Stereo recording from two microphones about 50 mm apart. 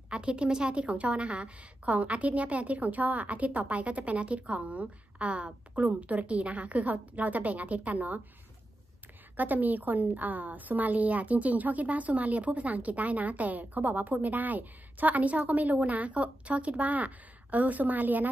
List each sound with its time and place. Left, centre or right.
0.1 s a woman's voice: centre
9.4 s a woman's voice: right